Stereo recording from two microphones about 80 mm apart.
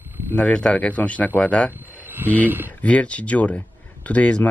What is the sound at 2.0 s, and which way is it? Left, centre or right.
Speech, right.